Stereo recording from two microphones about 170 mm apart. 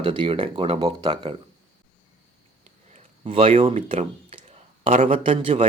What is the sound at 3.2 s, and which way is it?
A man's voice, 35° right (ahead or behind).